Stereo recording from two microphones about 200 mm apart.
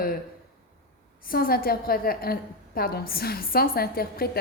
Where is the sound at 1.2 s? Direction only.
45° left (ahead or behind).